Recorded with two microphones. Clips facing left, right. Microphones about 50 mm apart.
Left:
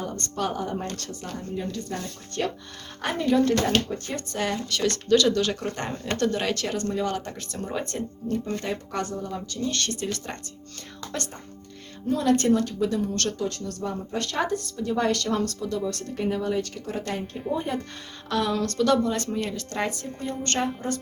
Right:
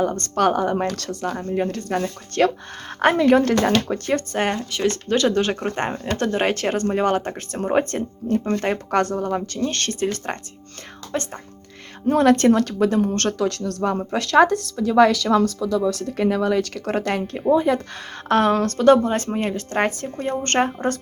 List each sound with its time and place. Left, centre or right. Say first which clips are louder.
0.0 s speech: right 10 dB; right
1.5 s speech: right 7 dB; right
4.3 s speech: right 5 dB; right
4.7 s speech: right 1 dB; right
11.1 s speech: right 7 dB; right
12.0 s speech: right 7 dB; right
13.4 s speech: right 7 dB; right
18.3 s speech: right 8 dB; right
19.7 s speech: right 8 dB; right
20.1 s speech: right 8 dB; right